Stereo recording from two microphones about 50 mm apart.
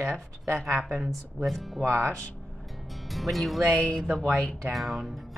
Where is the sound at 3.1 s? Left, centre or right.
Centre.